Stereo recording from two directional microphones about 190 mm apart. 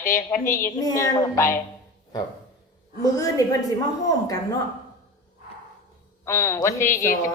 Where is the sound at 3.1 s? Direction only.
20° left (ahead or behind).